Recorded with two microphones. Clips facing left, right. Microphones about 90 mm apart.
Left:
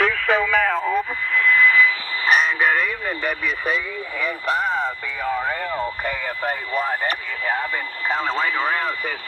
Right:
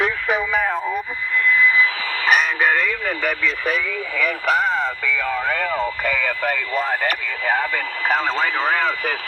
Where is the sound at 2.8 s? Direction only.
90° right.